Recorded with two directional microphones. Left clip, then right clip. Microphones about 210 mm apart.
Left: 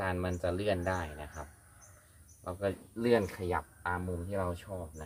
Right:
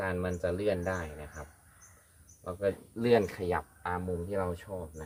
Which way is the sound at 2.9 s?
40° right (ahead or behind).